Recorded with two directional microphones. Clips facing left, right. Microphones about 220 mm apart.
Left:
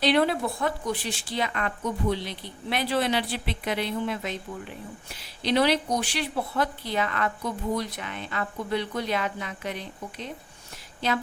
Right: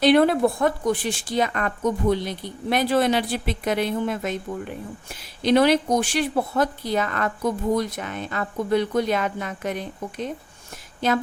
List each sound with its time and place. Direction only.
0.0 s a woman's voice: 50° right (ahead or behind)